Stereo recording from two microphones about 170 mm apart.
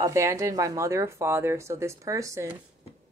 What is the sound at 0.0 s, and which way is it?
A woman's voice, 15° right (ahead or behind).